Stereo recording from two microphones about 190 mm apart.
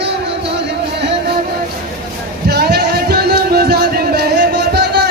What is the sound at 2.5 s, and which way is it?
Music, 60° right (ahead or behind).